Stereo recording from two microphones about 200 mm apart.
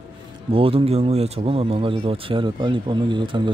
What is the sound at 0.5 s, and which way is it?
Speech, 30° right (ahead or behind).